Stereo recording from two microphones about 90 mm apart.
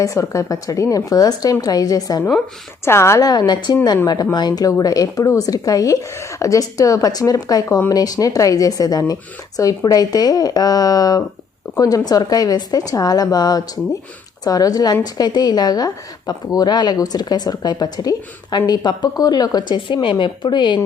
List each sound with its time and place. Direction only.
0.0 s speech: 35° left (ahead or behind)
2.8 s a woman's voice: 30° left (ahead or behind)
3.2 s speech: 50° left (ahead or behind)